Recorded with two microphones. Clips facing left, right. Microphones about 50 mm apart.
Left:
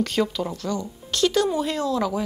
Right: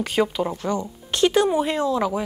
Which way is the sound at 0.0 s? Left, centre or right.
Centre.